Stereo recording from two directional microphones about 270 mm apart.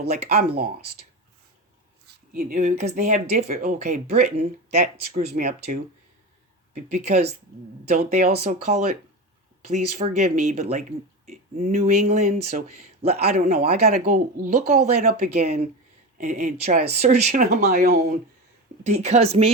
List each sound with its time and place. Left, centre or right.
0.0 s speech: right
2.3 s speech: right